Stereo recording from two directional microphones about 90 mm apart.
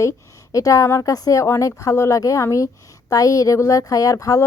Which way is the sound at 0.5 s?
40° left (ahead or behind).